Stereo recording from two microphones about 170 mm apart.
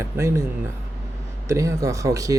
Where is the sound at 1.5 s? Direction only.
15° right (ahead or behind).